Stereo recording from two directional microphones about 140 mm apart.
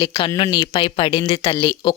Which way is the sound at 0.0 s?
35° left (ahead or behind).